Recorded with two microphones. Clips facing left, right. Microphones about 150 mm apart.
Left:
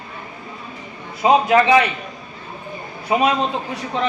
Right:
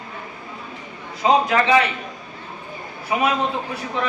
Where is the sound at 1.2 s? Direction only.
15° left (ahead or behind).